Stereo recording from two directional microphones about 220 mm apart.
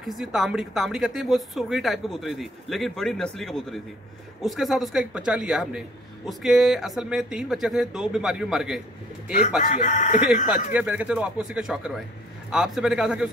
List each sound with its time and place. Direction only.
0.0 s a man's voice: centre (ahead or behind)
9.6 s speech: 35° left (ahead or behind)
10.5 s a man's voice: 5° right (ahead or behind)